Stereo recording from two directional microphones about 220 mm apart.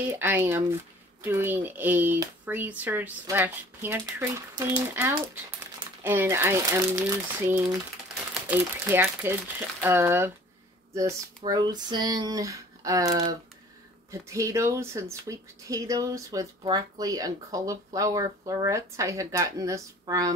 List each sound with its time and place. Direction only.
0.1 s speech: 10° right (ahead or behind)
8.5 s speech: 10° right (ahead or behind)
14.3 s speech: 15° right (ahead or behind)